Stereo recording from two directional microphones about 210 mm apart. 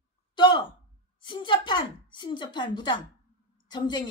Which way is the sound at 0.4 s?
20° left (ahead or behind).